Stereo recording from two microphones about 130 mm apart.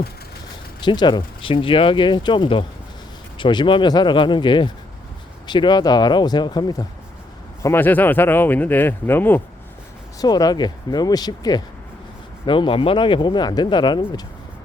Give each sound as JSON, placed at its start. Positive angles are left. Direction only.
{"t": 0.8, "sound": "speech", "side_deg": 35}
{"t": 7.6, "sound": "speech", "side_deg": 15}
{"t": 10.2, "sound": "speech", "side_deg": 30}